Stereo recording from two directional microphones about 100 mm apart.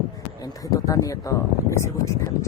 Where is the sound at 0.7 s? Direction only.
35° left (ahead or behind).